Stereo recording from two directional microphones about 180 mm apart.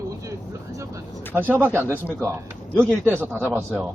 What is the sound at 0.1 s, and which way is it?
Vehicle, 20° right (ahead or behind).